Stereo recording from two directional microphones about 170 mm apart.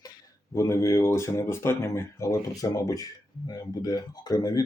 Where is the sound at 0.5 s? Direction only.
20° left (ahead or behind).